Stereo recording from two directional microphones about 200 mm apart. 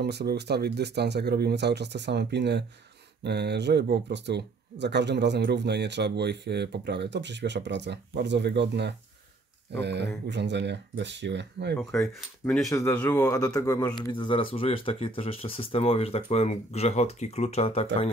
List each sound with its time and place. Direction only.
0.0 s speech: 55° right (ahead or behind)
11.8 s keys jangling: centre (ahead or behind)
12.6 s speech: 15° left (ahead or behind); by 17.8 s 30° left (ahead or behind)